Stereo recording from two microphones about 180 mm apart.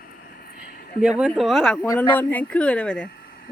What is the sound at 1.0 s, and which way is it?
Speech, 5° right (ahead or behind).